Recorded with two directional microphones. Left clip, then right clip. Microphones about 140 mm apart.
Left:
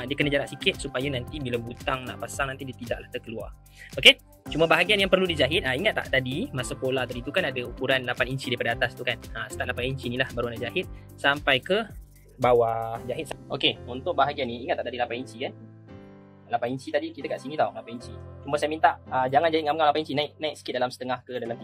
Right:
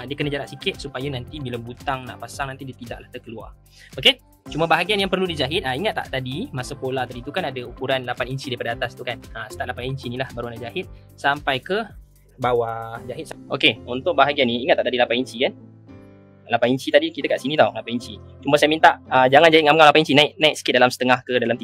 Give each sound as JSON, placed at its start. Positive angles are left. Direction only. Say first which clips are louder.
{"t": 0.0, "sound": "speech", "louder": "left 1 dB", "side_deg": 5}
{"t": 1.3, "sound": "speech", "louder": "left 1 dB", "side_deg": -10}
{"t": 1.9, "sound": "speech", "louder": "right 3 dB", "side_deg": 0}
{"t": 13.5, "sound": "speech", "louder": "right 7 dB", "side_deg": -35}
{"t": 13.8, "sound": "speech", "louder": "right 7 dB", "side_deg": -60}
{"t": 16.4, "sound": "speech", "louder": "right 9 dB", "side_deg": -80}